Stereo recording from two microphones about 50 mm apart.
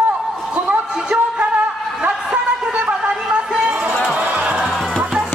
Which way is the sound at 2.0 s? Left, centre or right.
Right.